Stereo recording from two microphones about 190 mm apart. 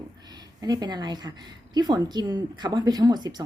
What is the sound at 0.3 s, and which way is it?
A woman's voice, 20° right (ahead or behind).